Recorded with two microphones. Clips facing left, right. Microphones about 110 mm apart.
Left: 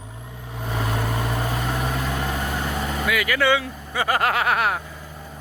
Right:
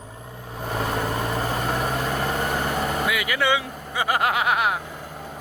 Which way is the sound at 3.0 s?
20° right (ahead or behind).